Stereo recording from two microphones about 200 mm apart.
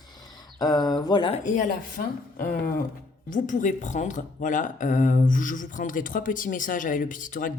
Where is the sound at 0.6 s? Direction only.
20° left (ahead or behind).